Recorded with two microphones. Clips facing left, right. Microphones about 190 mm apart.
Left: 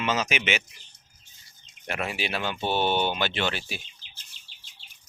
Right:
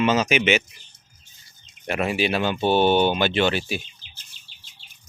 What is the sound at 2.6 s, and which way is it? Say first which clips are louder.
Speech: right 7 dB; 65° right (ahead or behind).